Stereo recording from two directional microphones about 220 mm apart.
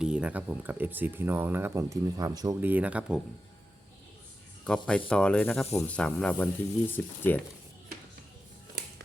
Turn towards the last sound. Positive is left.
turn(degrees=10)  # may be behind; listen again after turning